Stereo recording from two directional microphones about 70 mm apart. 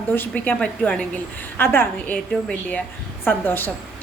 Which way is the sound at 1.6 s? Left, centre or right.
Left.